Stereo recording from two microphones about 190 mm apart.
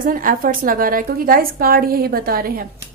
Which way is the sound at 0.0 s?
45° right (ahead or behind).